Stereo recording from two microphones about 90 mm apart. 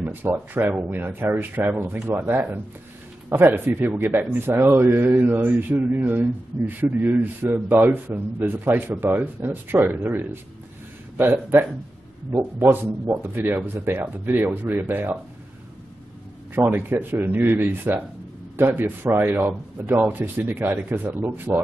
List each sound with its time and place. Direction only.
0.0 s speech: 20° right (ahead or behind)
16.5 s speech: 20° right (ahead or behind)